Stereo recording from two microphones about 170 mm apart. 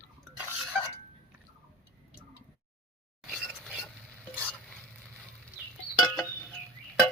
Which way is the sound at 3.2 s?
Centre (ahead or behind).